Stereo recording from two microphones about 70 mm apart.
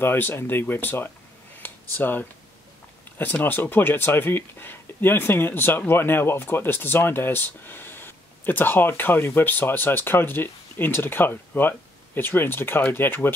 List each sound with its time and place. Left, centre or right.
0.0 s speech: left
1.6 s a sound: left
3.4 s speech: left